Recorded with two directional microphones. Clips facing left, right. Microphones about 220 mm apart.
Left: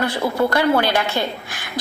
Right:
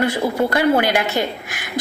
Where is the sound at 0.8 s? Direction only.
15° right (ahead or behind).